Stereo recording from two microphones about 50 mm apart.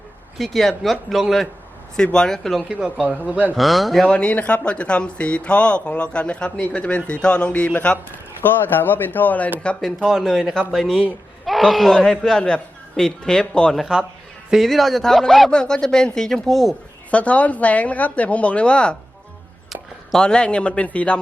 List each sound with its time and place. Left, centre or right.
0.3 s speech: centre
2.1 s speech: centre
2.7 s speech: right
3.5 s speech: centre
4.0 s speech: left
8.4 s speech: left
10.7 s speech: centre
11.9 s speech: centre
14.5 s speech: centre
17.1 s speech: left
20.1 s speech: centre